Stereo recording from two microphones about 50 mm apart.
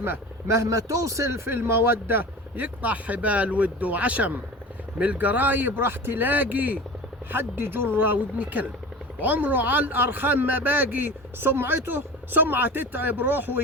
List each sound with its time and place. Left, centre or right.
0.4 s a man's voice: right
1.5 s speech: right
2.6 s speech: right